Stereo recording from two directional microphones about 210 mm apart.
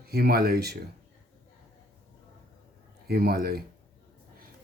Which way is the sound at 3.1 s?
45° right (ahead or behind).